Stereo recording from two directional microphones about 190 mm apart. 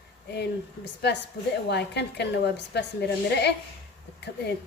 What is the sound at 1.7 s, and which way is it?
A woman's voice, 65° left (ahead or behind).